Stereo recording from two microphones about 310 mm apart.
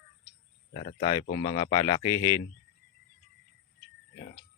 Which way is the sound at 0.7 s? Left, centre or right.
Centre.